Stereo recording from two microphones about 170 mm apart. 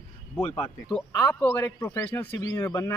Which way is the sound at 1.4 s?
10° left (ahead or behind).